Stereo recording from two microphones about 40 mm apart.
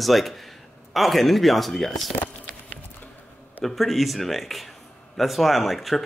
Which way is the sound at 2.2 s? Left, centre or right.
Left.